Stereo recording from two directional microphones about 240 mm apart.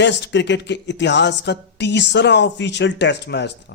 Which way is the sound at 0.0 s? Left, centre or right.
Left.